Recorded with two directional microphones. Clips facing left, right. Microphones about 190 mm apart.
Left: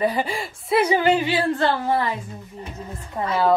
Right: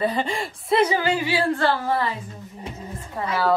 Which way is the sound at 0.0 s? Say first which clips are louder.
Left 1 dB; 10° left (ahead or behind).